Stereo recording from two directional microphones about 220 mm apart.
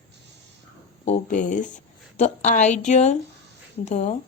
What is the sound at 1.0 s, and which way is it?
Speech, 35° left (ahead or behind).